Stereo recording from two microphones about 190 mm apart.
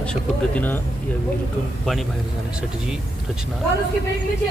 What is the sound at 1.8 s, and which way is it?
Speech, centre (ahead or behind).